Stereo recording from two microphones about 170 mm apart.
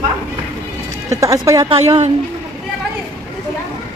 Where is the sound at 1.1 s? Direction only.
20° right (ahead or behind).